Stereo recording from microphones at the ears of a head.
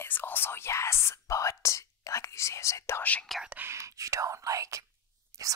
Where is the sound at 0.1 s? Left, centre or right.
Left.